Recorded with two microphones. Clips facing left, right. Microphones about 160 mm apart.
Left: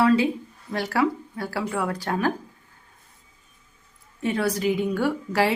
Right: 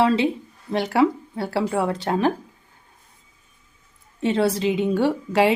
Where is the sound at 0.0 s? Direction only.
25° right (ahead or behind).